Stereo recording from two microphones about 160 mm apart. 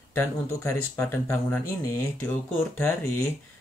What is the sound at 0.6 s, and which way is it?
Speech, 15° left (ahead or behind).